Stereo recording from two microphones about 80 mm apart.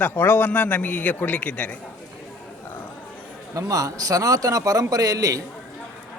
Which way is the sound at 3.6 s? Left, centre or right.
Right.